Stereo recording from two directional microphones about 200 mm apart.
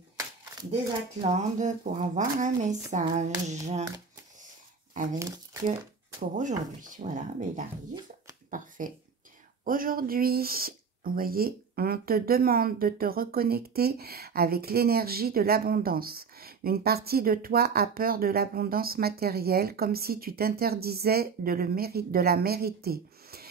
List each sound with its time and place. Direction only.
1.2 s a woman's voice: 35° right (ahead or behind)
5.1 s speech: 15° right (ahead or behind)
6.3 s a woman's voice: 40° right (ahead or behind)